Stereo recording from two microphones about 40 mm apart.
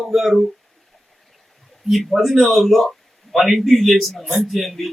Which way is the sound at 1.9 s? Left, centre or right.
Centre.